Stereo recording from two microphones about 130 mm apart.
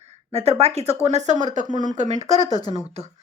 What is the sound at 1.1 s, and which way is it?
Speech, 65° right (ahead or behind).